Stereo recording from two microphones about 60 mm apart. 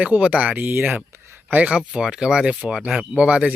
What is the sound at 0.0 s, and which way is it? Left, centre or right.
Speech, right.